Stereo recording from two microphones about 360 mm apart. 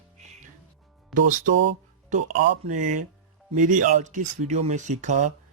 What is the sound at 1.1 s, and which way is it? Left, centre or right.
Speech, right.